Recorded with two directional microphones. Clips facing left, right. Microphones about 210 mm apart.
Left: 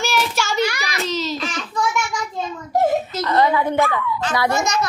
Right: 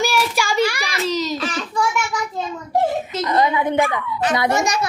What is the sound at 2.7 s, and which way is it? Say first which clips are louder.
Giggle: left 1 dB; 30° right (ahead or behind).